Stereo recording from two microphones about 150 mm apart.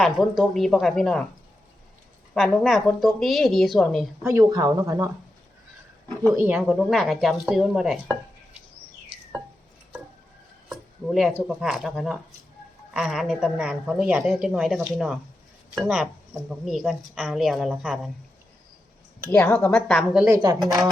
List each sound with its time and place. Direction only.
0.0 s speech: centre (ahead or behind)
2.3 s speech: centre (ahead or behind)
4.2 s speech: 20° right (ahead or behind)
6.3 s speech: 10° right (ahead or behind)
10.7 s a sound: centre (ahead or behind)
11.4 s speech: centre (ahead or behind)
19.3 s speech: 20° left (ahead or behind)
19.5 s speech: 5° left (ahead or behind)
20.1 s speech: 10° right (ahead or behind)